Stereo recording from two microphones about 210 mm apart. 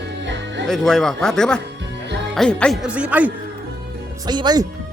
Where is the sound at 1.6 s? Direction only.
55° right (ahead or behind).